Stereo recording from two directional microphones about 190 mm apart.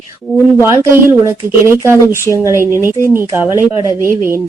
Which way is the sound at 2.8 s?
10° right (ahead or behind).